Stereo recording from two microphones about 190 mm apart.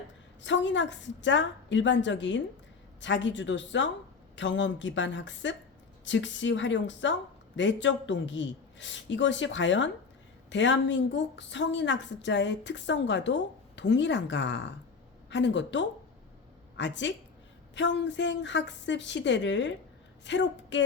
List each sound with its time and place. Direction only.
0.4 s a woman's voice: 75° left (ahead or behind)